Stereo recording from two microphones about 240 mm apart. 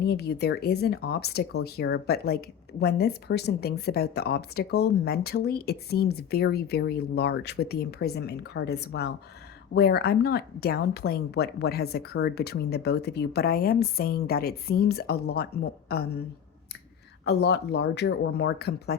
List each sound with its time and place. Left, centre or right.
0.0 s speech: left
17.2 s speech: left